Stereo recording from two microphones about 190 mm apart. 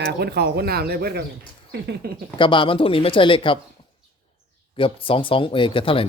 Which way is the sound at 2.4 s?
25° left (ahead or behind).